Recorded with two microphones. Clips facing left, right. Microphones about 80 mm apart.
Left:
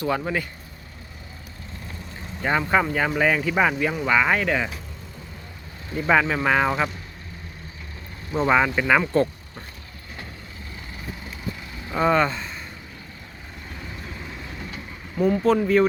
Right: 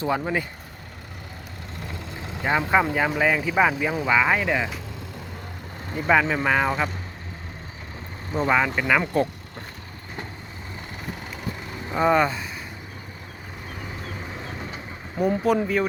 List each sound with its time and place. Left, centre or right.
0.0 s speech: centre
2.4 s speech: centre
6.1 s speech: centre
8.4 s speech: centre
11.9 s speech: centre
14.3 s vehicle: right
15.2 s speech: centre